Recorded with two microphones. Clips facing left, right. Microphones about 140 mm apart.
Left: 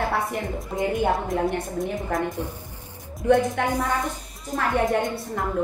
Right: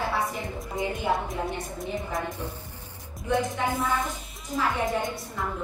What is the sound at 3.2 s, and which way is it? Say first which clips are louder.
Speech: left 7 dB; 60° left (ahead or behind).